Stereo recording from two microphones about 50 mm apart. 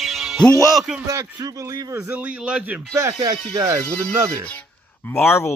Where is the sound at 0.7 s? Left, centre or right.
Centre.